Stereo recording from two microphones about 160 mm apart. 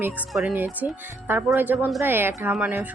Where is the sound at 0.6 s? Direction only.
10° right (ahead or behind).